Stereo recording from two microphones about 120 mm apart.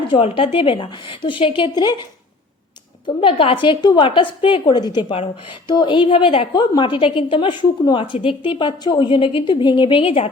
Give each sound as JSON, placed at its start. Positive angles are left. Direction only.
{"t": 0.1, "sound": "a woman's voice", "side_deg": 50}
{"t": 3.2, "sound": "a woman's voice", "side_deg": 50}
{"t": 6.5, "sound": "a woman's voice", "side_deg": 40}